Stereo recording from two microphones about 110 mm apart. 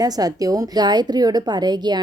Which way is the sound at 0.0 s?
35° right (ahead or behind).